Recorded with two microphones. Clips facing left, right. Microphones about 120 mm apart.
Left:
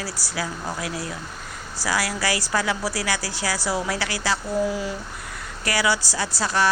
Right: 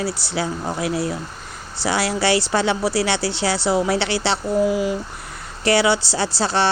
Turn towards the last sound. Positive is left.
turn(degrees=-30)  # may be behind; listen again after turning